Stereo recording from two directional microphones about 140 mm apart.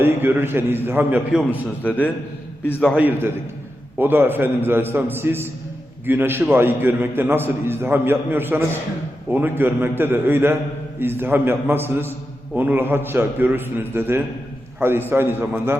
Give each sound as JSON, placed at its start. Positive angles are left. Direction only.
{"t": 0.0, "sound": "a man's voice", "side_deg": -15}
{"t": 1.8, "sound": "a man's voice", "side_deg": 10}
{"t": 2.9, "sound": "a man's voice", "side_deg": -10}